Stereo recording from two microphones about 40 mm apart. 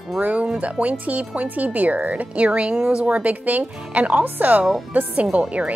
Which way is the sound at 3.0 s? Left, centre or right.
Right.